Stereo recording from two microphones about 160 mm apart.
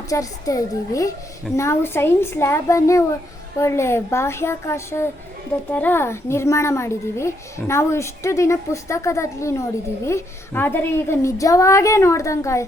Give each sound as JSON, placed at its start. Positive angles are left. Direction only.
{"t": 0.1, "sound": "a woman's voice", "side_deg": 20}